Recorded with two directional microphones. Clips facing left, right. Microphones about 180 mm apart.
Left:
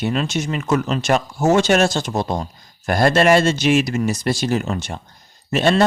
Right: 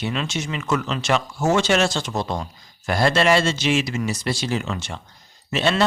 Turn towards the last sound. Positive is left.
turn(degrees=50)  # may be behind; listen again after turning